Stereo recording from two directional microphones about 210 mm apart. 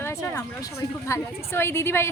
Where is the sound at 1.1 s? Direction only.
10° left (ahead or behind).